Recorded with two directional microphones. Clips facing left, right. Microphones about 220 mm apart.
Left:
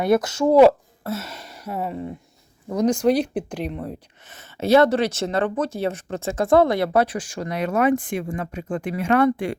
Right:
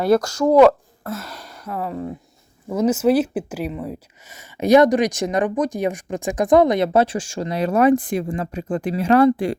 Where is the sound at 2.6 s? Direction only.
5° right (ahead or behind); by 9.6 s 35° right (ahead or behind).